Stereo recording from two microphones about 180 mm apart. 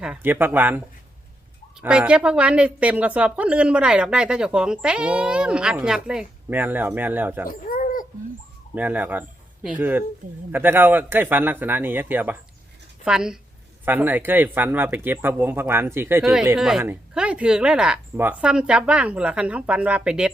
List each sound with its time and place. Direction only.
0.0 s a woman's voice: 10° right (ahead or behind)
1.8 s a woman's voice: 5° right (ahead or behind)
7.4 s bird: 50° left (ahead or behind)
8.7 s a woman's voice: 10° right (ahead or behind)